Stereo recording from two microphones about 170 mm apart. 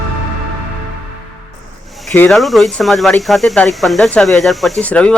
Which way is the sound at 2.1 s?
10° left (ahead or behind).